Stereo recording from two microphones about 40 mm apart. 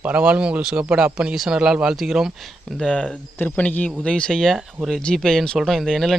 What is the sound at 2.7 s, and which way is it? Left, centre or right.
Speech, left.